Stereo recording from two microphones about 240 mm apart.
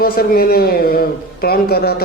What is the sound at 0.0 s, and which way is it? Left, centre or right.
A man's voice, left.